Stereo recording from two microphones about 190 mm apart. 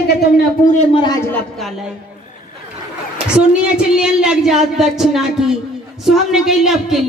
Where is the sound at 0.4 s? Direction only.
40° left (ahead or behind).